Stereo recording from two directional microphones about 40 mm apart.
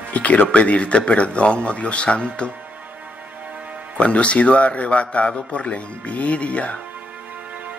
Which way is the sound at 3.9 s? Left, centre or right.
Left.